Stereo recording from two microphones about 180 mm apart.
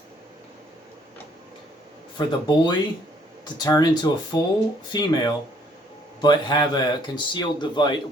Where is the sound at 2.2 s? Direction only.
25° left (ahead or behind).